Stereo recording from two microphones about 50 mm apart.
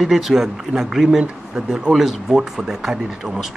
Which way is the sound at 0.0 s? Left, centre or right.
Centre.